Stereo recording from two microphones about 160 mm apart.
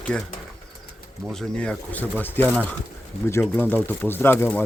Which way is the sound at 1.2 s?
5° left (ahead or behind).